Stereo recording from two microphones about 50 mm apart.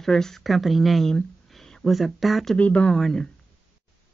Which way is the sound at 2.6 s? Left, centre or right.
Left.